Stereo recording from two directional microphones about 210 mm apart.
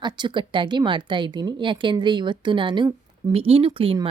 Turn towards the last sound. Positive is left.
turn(degrees=-25)  # may be behind; listen again after turning